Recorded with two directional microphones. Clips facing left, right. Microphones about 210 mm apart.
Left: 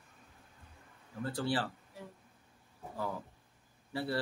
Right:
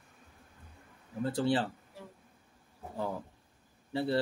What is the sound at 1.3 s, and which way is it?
Speech, 20° right (ahead or behind).